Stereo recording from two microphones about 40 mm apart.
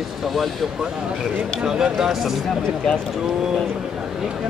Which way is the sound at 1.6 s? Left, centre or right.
Centre.